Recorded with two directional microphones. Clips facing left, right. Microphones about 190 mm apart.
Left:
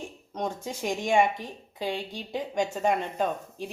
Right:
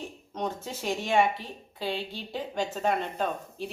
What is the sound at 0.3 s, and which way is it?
Speech, 15° left (ahead or behind).